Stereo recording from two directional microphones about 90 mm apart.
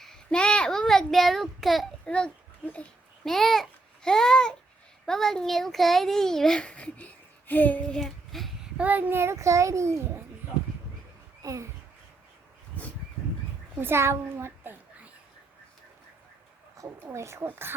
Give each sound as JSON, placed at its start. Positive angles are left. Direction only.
{"t": 0.0, "sound": "child singing", "side_deg": 5}
{"t": 2.0, "sound": "a child's voice", "side_deg": 10}
{"t": 3.2, "sound": "a child's voice", "side_deg": 5}
{"t": 8.8, "sound": "a child's voice", "side_deg": -20}
{"t": 11.4, "sound": "a child's voice", "side_deg": -35}
{"t": 13.7, "sound": "a child's voice", "side_deg": -25}
{"t": 16.7, "sound": "speech", "side_deg": -35}